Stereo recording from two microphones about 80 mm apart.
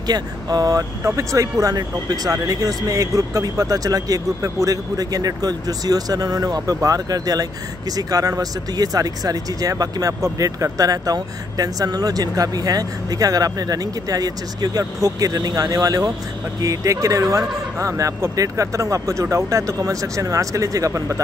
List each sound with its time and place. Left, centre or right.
0.0 s speech: right
1.0 s speech: right